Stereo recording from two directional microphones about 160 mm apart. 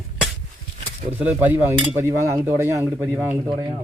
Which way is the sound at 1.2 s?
10° right (ahead or behind).